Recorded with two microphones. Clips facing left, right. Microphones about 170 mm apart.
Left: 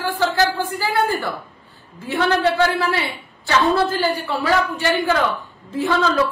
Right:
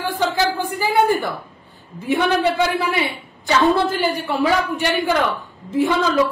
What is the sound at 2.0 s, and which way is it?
A woman's voice, 15° right (ahead or behind).